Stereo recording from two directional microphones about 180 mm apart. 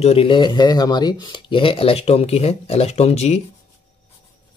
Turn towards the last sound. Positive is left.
turn(degrees=35)  # may be behind; listen again after turning